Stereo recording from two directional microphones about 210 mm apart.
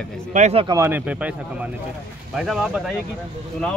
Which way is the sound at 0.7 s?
10° right (ahead or behind).